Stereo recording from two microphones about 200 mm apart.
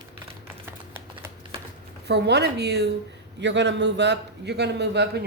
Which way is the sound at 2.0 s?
55° right (ahead or behind).